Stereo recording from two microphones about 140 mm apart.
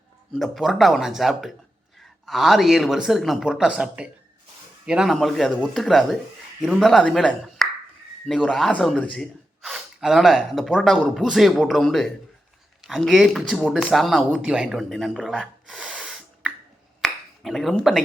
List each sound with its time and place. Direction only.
0.3 s speech: centre (ahead or behind)
13.6 s speech: 10° left (ahead or behind)
17.0 s finger snapping: centre (ahead or behind)